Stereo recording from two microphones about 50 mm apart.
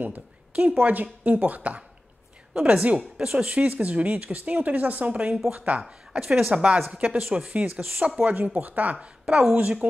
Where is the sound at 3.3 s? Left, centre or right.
Centre.